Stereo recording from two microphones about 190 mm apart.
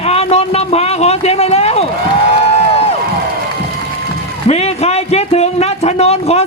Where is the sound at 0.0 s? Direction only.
35° left (ahead or behind).